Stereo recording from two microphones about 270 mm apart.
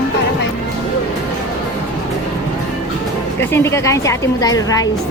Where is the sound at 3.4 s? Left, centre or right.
Centre.